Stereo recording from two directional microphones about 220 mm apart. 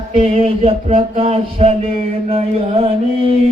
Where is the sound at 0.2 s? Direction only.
25° right (ahead or behind).